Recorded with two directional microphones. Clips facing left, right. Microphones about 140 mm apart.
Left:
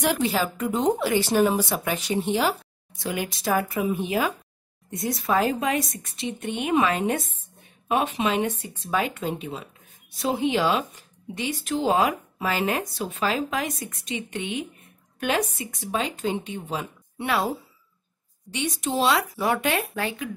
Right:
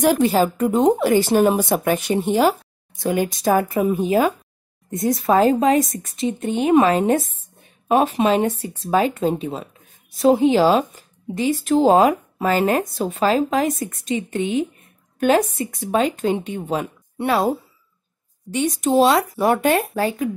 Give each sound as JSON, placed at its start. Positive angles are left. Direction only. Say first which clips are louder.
{"t": 0.0, "sound": "a woman's voice", "louder": "right 7 dB", "side_deg": -45}